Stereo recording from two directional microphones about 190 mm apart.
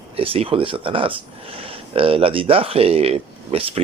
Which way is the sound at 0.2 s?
30° right (ahead or behind).